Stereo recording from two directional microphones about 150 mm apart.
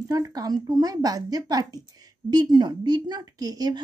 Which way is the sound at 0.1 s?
25° right (ahead or behind).